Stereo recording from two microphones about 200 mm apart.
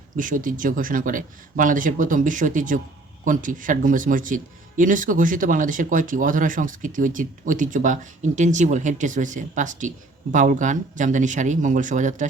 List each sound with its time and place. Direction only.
0.2 s speech: 40° right (ahead or behind)